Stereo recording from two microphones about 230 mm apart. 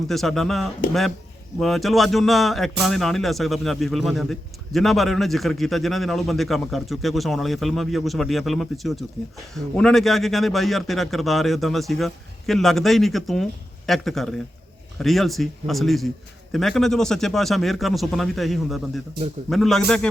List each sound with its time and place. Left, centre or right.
0.1 s speech: centre